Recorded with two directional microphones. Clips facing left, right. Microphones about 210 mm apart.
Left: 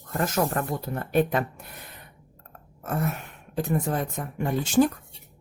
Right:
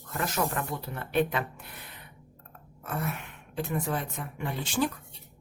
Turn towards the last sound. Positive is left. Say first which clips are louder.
# left 8 dB
turn(degrees=45)  # may be behind; listen again after turning